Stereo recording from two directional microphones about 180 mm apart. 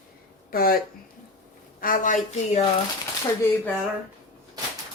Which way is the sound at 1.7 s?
50° left (ahead or behind).